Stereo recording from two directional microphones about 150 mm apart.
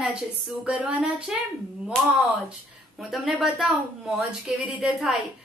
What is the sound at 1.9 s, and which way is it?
A woman's voice, 5° left (ahead or behind).